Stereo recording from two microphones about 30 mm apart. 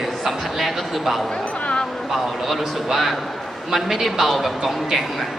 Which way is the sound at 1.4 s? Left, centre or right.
Left.